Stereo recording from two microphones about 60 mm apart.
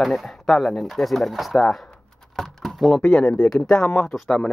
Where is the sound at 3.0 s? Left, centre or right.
Centre.